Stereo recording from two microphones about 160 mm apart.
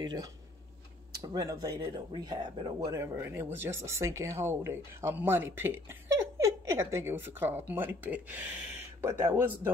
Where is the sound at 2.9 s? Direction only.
20° right (ahead or behind).